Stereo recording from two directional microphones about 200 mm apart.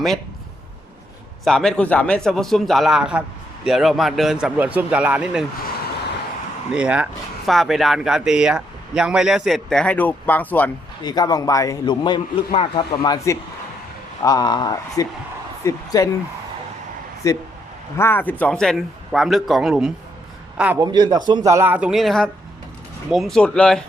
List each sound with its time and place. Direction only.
1.5 s speech: 5° left (ahead or behind)
6.7 s speech: 5° right (ahead or behind)
11.0 s a man's voice: 20° left (ahead or behind)
17.2 s speech: 15° left (ahead or behind); by 19.9 s centre (ahead or behind)
20.7 s speech: 20° right (ahead or behind); by 23.8 s 5° left (ahead or behind)